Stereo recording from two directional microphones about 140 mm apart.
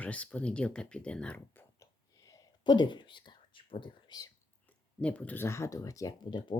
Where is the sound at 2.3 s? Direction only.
30° left (ahead or behind).